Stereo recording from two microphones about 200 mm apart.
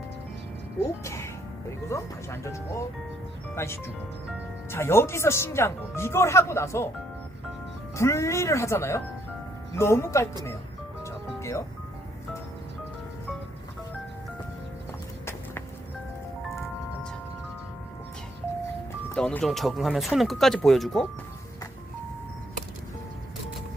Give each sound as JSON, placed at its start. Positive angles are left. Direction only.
{"t": 1.0, "sound": "speech", "side_deg": 15}
{"t": 7.9, "sound": "speech", "side_deg": 15}
{"t": 11.0, "sound": "music", "side_deg": 15}
{"t": 19.1, "sound": "speech", "side_deg": 5}